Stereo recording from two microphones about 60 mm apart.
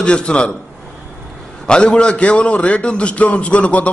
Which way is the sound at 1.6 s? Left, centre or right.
Centre.